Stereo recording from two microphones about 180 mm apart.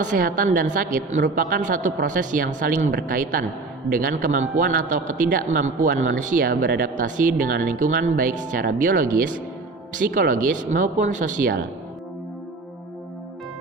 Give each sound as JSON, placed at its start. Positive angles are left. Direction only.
{"t": 0.0, "sound": "speech", "side_deg": -50}